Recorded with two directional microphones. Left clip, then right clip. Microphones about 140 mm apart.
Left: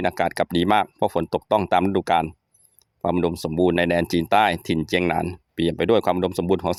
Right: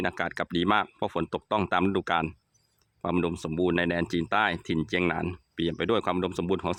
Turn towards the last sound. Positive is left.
turn(degrees=25)  # may be behind; listen again after turning